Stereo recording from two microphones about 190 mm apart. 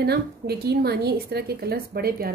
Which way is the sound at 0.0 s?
55° right (ahead or behind).